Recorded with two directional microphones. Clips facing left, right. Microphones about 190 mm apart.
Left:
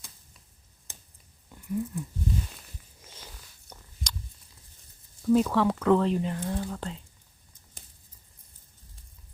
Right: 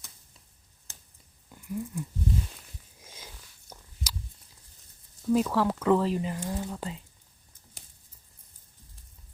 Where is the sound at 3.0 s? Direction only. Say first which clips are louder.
Right 1 dB; 10° right (ahead or behind).